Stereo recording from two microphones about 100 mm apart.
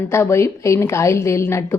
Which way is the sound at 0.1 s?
25° left (ahead or behind).